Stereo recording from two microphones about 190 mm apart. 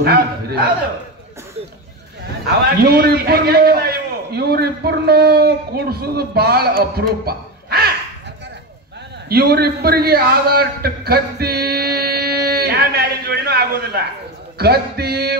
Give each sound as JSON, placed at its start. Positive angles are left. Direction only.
{"t": 0.0, "sound": "a man's voice", "side_deg": -55}
{"t": 2.8, "sound": "a man's voice", "side_deg": -55}
{"t": 9.3, "sound": "a man's voice", "side_deg": -55}